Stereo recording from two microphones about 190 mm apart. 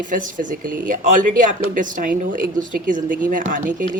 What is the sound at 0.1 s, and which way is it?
Speech, 45° right (ahead or behind).